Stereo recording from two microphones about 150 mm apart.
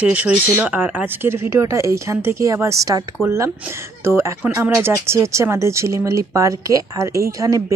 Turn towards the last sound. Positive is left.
turn(degrees=-20)  # may be behind; listen again after turning